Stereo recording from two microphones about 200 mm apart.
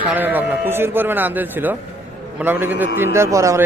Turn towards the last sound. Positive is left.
turn(degrees=-15)  # may be behind; listen again after turning